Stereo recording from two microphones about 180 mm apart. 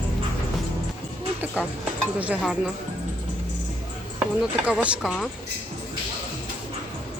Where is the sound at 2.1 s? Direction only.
10° right (ahead or behind).